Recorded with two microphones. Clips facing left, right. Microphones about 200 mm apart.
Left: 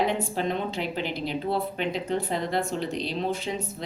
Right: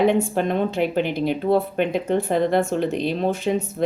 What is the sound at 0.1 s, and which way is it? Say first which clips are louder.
Speech: right 7 dB; 55° right (ahead or behind).